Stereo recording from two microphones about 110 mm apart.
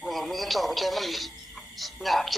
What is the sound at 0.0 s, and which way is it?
Speech, centre (ahead or behind).